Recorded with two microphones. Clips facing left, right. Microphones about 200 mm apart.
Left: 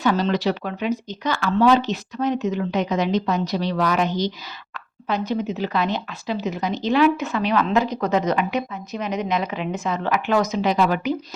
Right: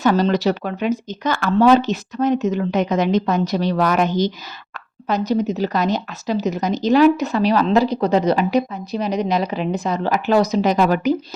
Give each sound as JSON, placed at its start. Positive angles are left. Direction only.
{"t": 0.0, "sound": "speech", "side_deg": -45}